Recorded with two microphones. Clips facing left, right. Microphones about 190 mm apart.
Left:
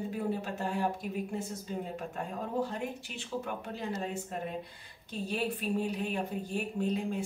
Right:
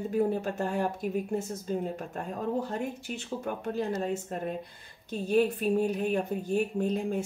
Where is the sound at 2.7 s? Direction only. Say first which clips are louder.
Right 4 dB; 45° right (ahead or behind).